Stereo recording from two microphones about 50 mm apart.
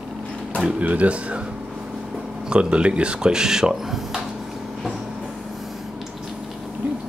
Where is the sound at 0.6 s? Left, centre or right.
Right.